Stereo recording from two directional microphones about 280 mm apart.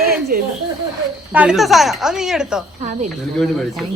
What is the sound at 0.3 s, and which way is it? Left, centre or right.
Speech, right.